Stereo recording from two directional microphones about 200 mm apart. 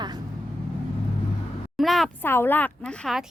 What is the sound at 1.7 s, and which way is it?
Speech, centre (ahead or behind).